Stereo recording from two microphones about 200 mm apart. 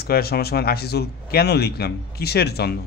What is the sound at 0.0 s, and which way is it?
A man's voice, 50° left (ahead or behind).